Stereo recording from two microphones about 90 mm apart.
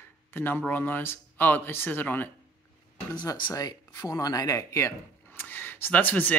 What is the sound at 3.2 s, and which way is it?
Speech, 55° left (ahead or behind).